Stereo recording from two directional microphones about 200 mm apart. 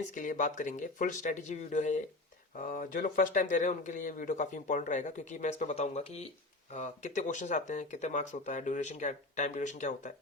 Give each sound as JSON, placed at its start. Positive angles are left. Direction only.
{"t": 0.1, "sound": "speech", "side_deg": 40}